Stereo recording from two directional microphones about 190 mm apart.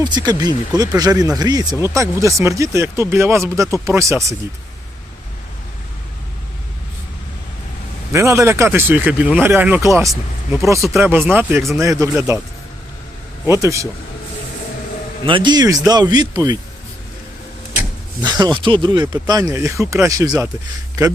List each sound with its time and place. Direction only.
0.0 s speech: 20° right (ahead or behind)
8.1 s speech: 15° right (ahead or behind)
13.5 s speech: 15° right (ahead or behind)
15.3 s speech: 25° right (ahead or behind)
18.2 s speech: 20° right (ahead or behind)